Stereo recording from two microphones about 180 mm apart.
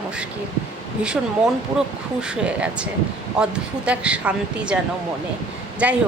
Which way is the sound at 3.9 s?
5° right (ahead or behind).